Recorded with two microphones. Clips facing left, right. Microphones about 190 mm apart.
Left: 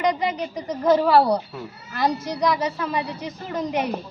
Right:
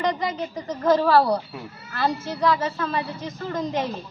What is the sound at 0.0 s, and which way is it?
Speech, 15° left (ahead or behind).